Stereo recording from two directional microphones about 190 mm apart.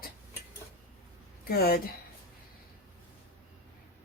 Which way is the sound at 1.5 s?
55° left (ahead or behind).